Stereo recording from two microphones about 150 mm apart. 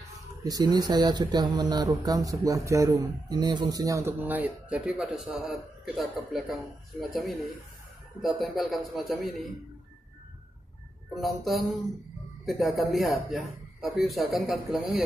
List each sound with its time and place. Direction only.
0.4 s speech: 25° right (ahead or behind)
4.2 s a man's voice: 10° right (ahead or behind)
11.1 s a man's voice: centre (ahead or behind)